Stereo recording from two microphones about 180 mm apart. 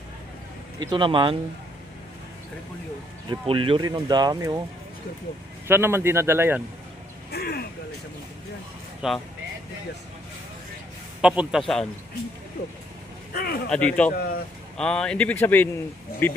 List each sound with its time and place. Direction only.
0.8 s speech: 25° right (ahead or behind)
3.2 s speech: 30° right (ahead or behind)
5.6 s a man's voice: 15° right (ahead or behind)
7.3 s a sound: 60° left (ahead or behind)
9.0 s speech: centre (ahead or behind)
11.2 s a man's voice: 5° right (ahead or behind)
13.3 s speech: 55° left (ahead or behind)
13.7 s speech: 5° left (ahead or behind)